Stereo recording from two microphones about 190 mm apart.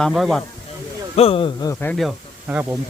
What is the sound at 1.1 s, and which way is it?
Speech, 30° left (ahead or behind).